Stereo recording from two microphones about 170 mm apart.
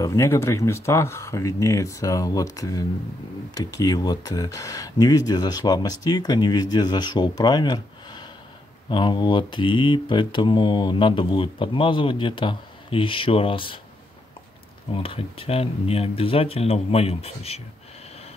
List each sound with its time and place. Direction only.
0.0 s speech: 20° left (ahead or behind)
15.0 s speech: 35° left (ahead or behind)